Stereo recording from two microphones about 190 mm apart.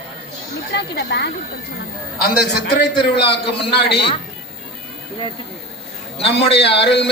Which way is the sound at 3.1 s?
60° left (ahead or behind).